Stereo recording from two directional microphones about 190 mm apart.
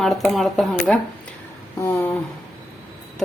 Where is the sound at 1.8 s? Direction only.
15° left (ahead or behind).